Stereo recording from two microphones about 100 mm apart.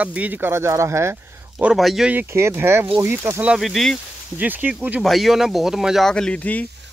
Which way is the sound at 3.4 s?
Centre (ahead or behind).